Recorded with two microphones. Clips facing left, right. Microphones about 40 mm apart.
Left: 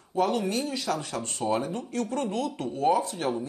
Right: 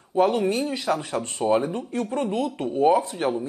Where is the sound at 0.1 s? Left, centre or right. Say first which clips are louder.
Right 5 dB; right.